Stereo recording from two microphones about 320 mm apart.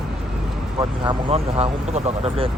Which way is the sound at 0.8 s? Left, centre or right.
Centre.